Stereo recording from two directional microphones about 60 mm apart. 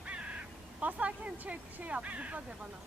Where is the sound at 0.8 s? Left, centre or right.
Right.